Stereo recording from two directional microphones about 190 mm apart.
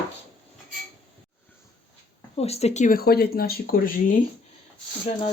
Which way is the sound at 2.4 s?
35° left (ahead or behind).